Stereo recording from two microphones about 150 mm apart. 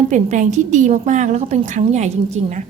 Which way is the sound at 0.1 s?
55° right (ahead or behind).